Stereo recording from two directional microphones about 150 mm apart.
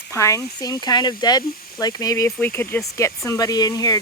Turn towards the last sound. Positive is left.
turn(degrees=25)  # may be behind; listen again after turning